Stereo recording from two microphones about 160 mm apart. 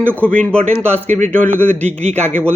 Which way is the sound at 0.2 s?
10° left (ahead or behind).